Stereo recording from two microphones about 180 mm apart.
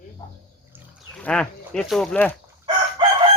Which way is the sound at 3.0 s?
30° right (ahead or behind).